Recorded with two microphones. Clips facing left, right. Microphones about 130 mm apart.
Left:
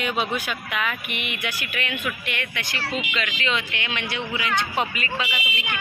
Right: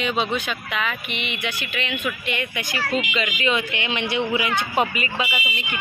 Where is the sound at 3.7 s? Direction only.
20° right (ahead or behind).